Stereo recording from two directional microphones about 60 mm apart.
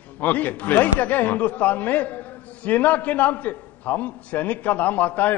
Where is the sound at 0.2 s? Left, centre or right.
Left.